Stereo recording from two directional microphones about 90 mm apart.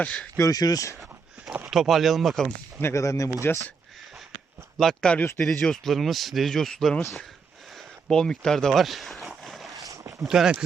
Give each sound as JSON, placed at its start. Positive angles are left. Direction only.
{"t": 0.0, "sound": "speech", "side_deg": 15}
{"t": 0.3, "sound": "speech", "side_deg": 40}
{"t": 1.7, "sound": "speech", "side_deg": 0}
{"t": 2.8, "sound": "speech", "side_deg": 35}
{"t": 3.4, "sound": "speech", "side_deg": 25}
{"t": 4.8, "sound": "speech", "side_deg": 5}
{"t": 8.1, "sound": "speech", "side_deg": 10}
{"t": 9.3, "sound": "vehicle", "side_deg": 0}
{"t": 9.7, "sound": "a sound", "side_deg": -35}
{"t": 10.2, "sound": "speech", "side_deg": -5}